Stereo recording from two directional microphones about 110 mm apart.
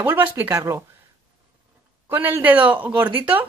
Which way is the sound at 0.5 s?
30° right (ahead or behind).